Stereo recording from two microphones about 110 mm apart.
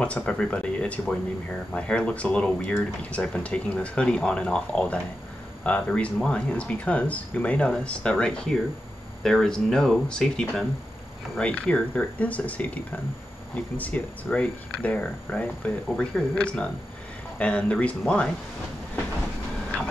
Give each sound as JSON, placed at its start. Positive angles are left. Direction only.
{"t": 0.0, "sound": "speech", "side_deg": 10}